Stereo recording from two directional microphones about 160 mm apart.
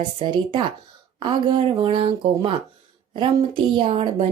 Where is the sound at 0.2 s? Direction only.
30° right (ahead or behind).